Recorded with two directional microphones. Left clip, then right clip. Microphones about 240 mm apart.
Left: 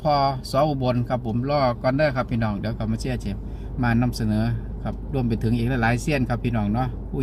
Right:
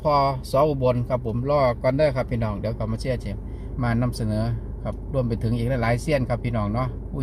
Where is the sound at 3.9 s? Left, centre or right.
Left.